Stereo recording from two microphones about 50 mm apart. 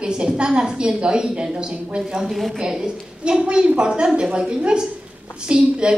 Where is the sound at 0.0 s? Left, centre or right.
Centre.